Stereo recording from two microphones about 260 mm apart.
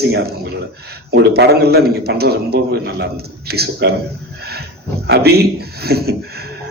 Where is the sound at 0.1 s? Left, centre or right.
Right.